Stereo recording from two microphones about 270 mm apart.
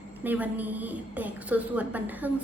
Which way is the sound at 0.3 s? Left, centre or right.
Centre.